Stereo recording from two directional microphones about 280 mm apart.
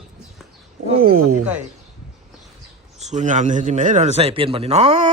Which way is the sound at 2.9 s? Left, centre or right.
Right.